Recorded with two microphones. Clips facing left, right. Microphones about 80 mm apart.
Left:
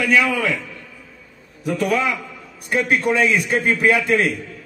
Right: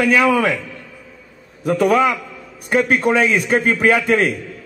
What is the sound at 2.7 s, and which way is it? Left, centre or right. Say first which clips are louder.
Speech: right 3 dB; right.